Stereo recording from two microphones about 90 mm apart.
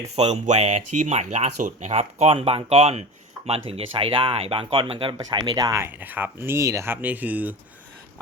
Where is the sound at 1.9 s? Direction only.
70° right (ahead or behind).